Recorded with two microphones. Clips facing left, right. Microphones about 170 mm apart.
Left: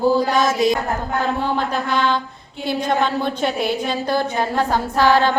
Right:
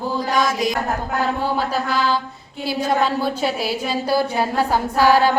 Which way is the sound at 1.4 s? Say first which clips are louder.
Even; 5° right (ahead or behind).